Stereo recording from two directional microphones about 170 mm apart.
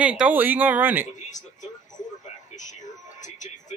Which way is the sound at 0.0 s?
5° right (ahead or behind).